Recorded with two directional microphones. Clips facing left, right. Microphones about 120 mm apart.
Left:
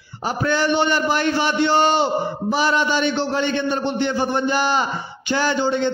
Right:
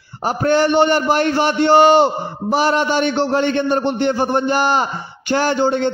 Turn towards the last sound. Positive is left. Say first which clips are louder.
# right 3 dB
turn(degrees=-50)  # may be behind; listen again after turning